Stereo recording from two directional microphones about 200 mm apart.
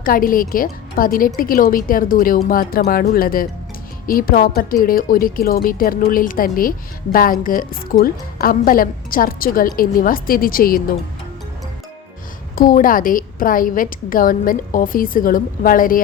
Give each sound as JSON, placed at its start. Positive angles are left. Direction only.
{"t": 0.0, "sound": "a woman's voice", "side_deg": 45}
{"t": 12.5, "sound": "a woman's voice", "side_deg": 45}